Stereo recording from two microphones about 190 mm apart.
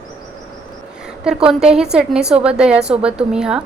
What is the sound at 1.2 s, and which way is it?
A woman's voice, 5° right (ahead or behind).